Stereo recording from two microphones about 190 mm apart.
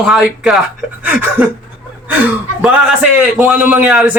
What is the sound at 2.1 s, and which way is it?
A man's voice, 5° right (ahead or behind).